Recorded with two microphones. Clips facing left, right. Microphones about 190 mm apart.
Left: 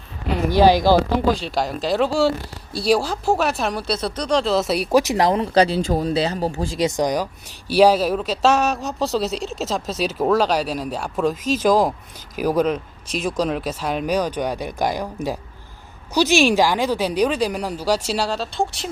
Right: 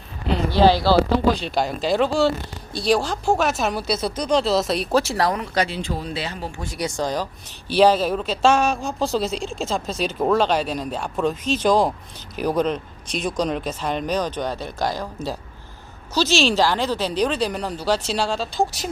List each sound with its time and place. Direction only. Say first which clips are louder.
0.5 s speech: left 2 dB; 15° left (ahead or behind)
1.5 s speech: even; centre (ahead or behind)